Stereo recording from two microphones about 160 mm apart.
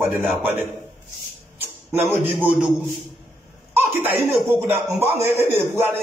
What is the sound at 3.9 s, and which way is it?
A man's voice, 15° right (ahead or behind).